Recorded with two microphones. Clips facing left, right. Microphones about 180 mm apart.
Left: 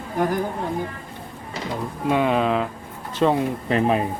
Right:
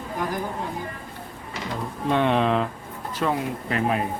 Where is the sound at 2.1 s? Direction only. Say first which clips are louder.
Left 1 dB; 5° left (ahead or behind).